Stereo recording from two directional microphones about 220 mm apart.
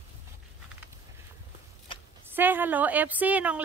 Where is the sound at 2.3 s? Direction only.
10° right (ahead or behind).